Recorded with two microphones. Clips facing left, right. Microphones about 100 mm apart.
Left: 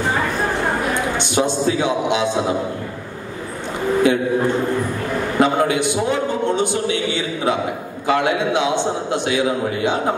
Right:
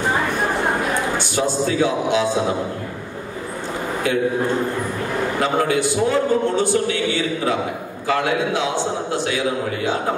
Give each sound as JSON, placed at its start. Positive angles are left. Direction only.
{"t": 1.1, "sound": "speech", "side_deg": 20}
{"t": 5.4, "sound": "speech", "side_deg": 20}